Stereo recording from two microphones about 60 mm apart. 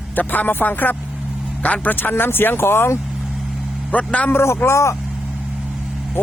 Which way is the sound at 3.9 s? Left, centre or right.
Left.